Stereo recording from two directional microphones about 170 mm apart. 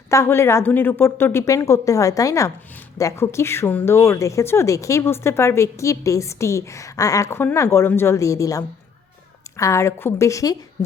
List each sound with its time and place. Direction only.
0.1 s a woman's voice: 15° left (ahead or behind)